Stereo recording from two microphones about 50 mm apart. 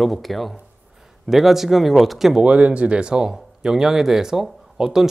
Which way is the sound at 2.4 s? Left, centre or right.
Right.